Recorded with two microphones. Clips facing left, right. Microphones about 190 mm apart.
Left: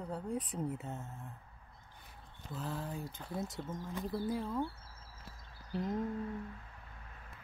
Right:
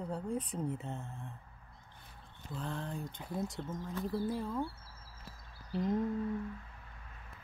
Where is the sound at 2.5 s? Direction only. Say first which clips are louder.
Even; 5° left (ahead or behind).